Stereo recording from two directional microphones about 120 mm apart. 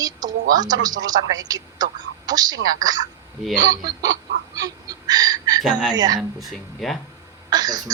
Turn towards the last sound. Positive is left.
turn(degrees=-35)  # may be behind; listen again after turning